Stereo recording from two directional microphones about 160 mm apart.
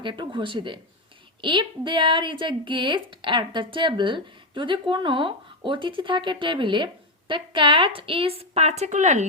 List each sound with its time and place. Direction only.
0.0 s speech: 30° right (ahead or behind); by 9.2 s 50° right (ahead or behind)